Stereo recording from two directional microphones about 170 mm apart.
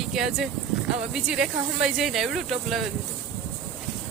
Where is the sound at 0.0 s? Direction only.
Centre (ahead or behind).